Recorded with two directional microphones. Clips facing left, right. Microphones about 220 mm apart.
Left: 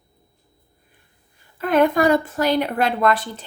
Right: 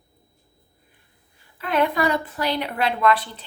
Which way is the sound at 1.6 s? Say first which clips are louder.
Left 5 dB; 45° left (ahead or behind).